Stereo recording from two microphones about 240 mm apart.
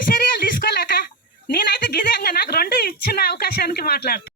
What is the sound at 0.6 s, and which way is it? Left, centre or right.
Speech, left.